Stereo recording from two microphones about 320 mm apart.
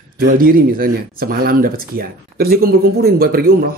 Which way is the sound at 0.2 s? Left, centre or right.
Right.